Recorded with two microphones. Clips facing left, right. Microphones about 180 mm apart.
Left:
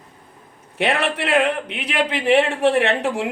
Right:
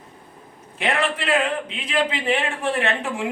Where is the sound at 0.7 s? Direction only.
70° left (ahead or behind).